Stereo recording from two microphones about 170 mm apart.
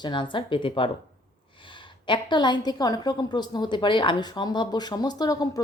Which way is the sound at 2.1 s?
25° left (ahead or behind).